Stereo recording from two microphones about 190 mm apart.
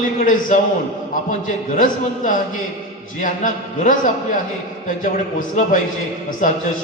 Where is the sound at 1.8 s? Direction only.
45° left (ahead or behind).